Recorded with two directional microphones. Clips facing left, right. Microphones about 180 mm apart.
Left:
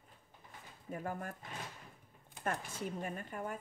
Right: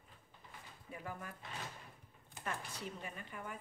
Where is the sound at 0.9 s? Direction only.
45° left (ahead or behind).